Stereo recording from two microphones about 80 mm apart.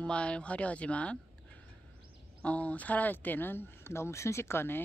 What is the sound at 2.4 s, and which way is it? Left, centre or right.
Speech, centre.